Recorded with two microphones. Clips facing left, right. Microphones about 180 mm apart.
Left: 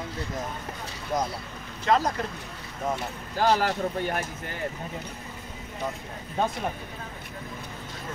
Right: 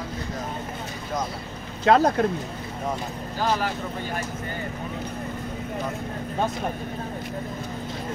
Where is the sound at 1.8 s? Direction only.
60° right (ahead or behind).